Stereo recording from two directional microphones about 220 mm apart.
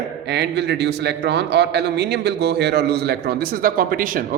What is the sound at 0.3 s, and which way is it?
A man's voice, 50° right (ahead or behind).